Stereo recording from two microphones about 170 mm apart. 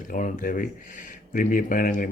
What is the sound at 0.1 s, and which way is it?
Speech, 50° left (ahead or behind).